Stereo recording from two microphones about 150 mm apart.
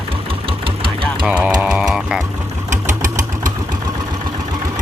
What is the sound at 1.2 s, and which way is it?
Speech, 5° right (ahead or behind).